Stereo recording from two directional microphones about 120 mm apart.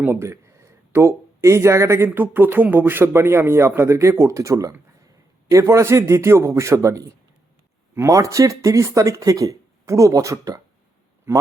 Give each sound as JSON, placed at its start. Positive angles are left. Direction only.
{"t": 0.0, "sound": "speech", "side_deg": -20}